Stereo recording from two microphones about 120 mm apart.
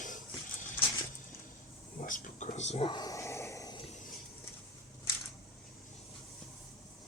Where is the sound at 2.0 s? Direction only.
90° left; by 2.8 s 70° left (ahead or behind).